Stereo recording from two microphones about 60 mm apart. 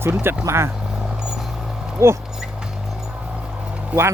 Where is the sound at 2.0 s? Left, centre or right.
Right.